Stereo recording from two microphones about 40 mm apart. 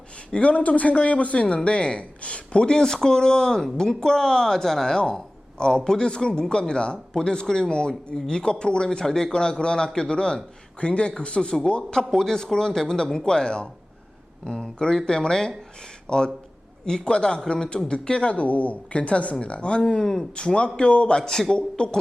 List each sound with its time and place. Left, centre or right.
0.3 s a man's voice: left
11.9 s a man's voice: centre
18.3 s a man's voice: left; by 21.9 s centre